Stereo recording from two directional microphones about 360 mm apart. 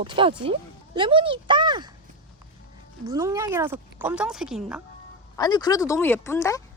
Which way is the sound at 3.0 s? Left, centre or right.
Centre.